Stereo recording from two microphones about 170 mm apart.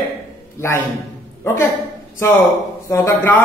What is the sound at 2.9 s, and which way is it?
Speech, 15° left (ahead or behind).